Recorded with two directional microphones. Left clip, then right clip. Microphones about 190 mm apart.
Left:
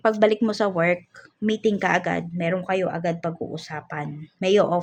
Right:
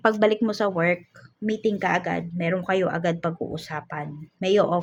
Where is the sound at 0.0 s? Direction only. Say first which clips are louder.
Left 1 dB; 5° left (ahead or behind).